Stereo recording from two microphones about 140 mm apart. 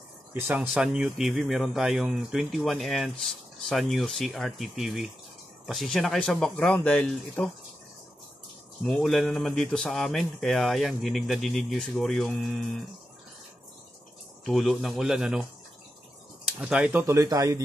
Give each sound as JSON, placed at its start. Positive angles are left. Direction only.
{"t": 0.3, "sound": "speech", "side_deg": -15}
{"t": 8.8, "sound": "speech", "side_deg": 0}
{"t": 14.4, "sound": "speech", "side_deg": 0}
{"t": 16.6, "sound": "speech", "side_deg": -5}
{"t": 17.0, "sound": "speech", "side_deg": -20}